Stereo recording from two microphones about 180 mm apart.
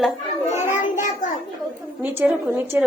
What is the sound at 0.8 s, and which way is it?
Child singing, 45° left (ahead or behind).